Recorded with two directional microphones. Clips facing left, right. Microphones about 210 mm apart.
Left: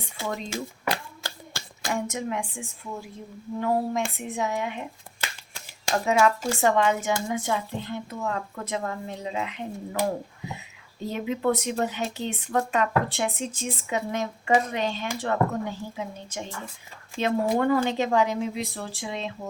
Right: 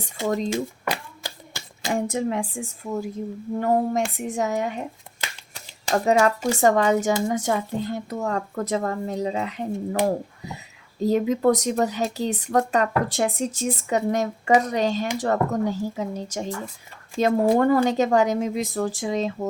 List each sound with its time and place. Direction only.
0.3 s speech: 40° right (ahead or behind)
1.2 s hands: 20° right (ahead or behind)
1.9 s a woman's voice: 35° right (ahead or behind)
5.9 s speech: 40° right (ahead or behind)
11.0 s a woman's voice: 40° right (ahead or behind)